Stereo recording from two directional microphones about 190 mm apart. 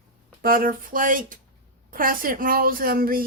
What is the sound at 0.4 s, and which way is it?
A woman's voice, 50° right (ahead or behind).